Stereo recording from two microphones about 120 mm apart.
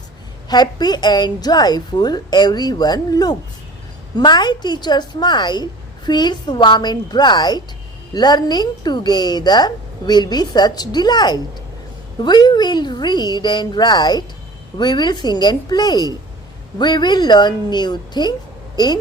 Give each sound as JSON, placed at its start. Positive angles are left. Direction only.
{"t": 0.4, "sound": "a woman's voice", "side_deg": 35}